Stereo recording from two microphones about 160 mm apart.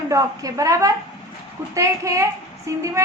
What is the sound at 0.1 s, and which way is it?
A woman's voice, 20° right (ahead or behind).